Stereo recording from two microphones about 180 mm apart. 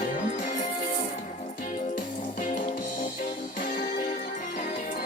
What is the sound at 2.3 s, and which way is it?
Music, 45° left (ahead or behind).